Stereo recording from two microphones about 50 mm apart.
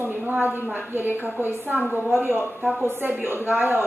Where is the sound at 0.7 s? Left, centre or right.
Right.